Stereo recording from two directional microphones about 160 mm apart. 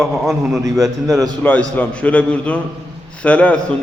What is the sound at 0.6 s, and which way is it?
Speech, 20° right (ahead or behind).